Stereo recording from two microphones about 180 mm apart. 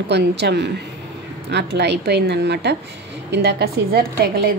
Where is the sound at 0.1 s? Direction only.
70° right (ahead or behind).